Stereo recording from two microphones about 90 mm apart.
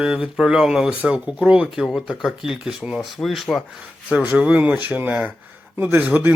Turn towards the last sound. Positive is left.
turn(degrees=-20)  # may be behind; listen again after turning